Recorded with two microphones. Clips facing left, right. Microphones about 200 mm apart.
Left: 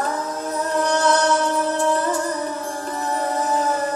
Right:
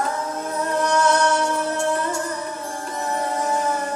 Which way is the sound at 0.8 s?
35° left (ahead or behind).